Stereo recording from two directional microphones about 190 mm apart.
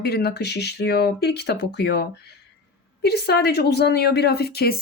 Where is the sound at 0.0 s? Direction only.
60° left (ahead or behind).